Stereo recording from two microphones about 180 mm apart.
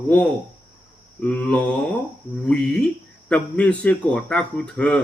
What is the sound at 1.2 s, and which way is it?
Speech, 5° left (ahead or behind).